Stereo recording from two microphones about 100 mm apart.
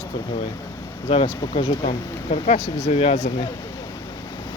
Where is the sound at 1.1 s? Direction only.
70° left (ahead or behind).